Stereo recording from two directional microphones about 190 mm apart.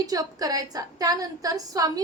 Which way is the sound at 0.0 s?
20° right (ahead or behind).